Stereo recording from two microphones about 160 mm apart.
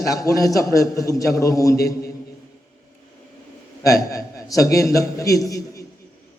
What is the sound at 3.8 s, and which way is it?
A man's voice, 20° left (ahead or behind).